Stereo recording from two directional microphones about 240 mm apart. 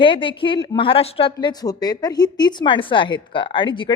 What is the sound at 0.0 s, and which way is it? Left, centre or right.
A woman's voice, left.